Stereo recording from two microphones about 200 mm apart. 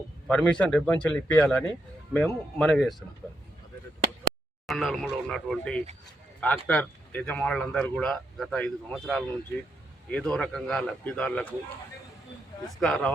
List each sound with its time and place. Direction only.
0.3 s speech: 5° left (ahead or behind)
4.6 s speech: centre (ahead or behind)
12.8 s speech: 5° left (ahead or behind)